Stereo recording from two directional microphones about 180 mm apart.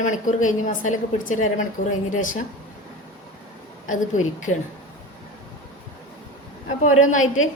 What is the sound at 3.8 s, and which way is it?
Speech, 45° left (ahead or behind).